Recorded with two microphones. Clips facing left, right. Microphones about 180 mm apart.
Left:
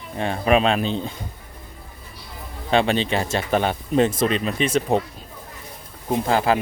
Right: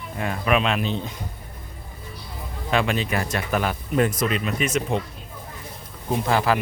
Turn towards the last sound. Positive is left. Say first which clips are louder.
# left 2 dB
turn(degrees=30)  # may be behind; listen again after turning